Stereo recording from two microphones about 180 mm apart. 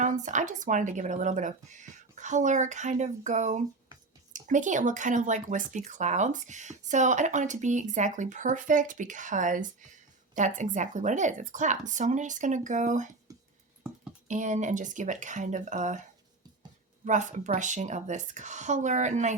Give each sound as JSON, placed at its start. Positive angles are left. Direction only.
{"t": 0.0, "sound": "speech", "side_deg": -45}
{"t": 14.3, "sound": "speech", "side_deg": -45}
{"t": 17.1, "sound": "a woman's voice", "side_deg": -45}